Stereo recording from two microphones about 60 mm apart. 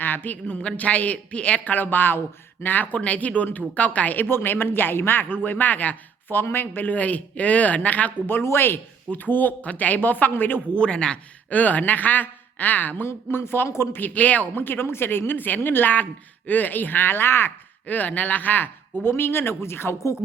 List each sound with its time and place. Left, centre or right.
0.0 s speech: left
2.9 s a woman's voice: left
8.4 s a woman's voice: left
10.8 s speech: centre
13.1 s a woman's voice: left
17.8 s a woman's voice: left